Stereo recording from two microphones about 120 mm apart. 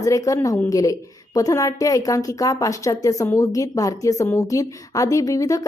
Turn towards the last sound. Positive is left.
turn(degrees=30)  # may be behind; listen again after turning